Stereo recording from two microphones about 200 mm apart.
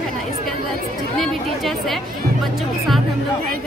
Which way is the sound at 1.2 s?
Centre (ahead or behind).